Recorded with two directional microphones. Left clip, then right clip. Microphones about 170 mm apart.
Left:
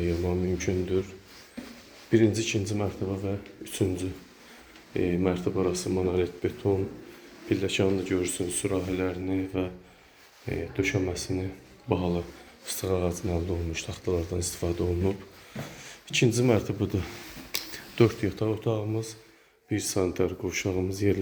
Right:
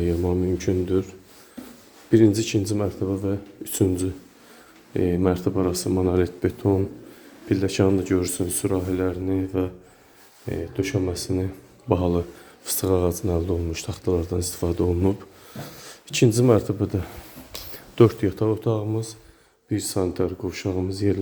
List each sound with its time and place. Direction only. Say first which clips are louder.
0.0 s speech: right 5 dB; 30° right (ahead or behind)
2.0 s speech: right 6 dB; 35° right (ahead or behind)
10.4 s speech: right 2 dB; 20° right (ahead or behind)
11.9 s speech: right 6 dB; 45° right (ahead or behind); by 20.8 s 15° right (ahead or behind)